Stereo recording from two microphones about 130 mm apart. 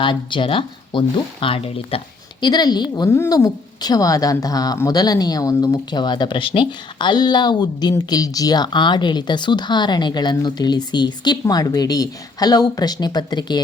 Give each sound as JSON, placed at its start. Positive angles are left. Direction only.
{"t": 0.0, "sound": "speech", "side_deg": 40}
{"t": 2.4, "sound": "a woman's voice", "side_deg": 30}